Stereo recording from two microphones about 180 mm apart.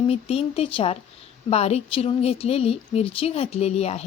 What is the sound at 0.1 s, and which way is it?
Speech, 35° left (ahead or behind).